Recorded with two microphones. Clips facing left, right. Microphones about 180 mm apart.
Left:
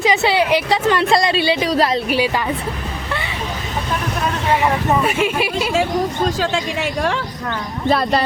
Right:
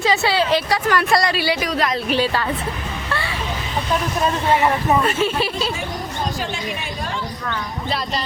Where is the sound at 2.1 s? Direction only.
10° left (ahead or behind).